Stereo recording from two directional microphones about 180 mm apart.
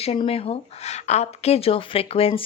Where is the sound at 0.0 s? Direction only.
35° left (ahead or behind).